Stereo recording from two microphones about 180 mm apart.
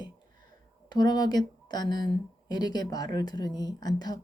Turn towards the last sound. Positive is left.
turn(degrees=20)  # may be behind; listen again after turning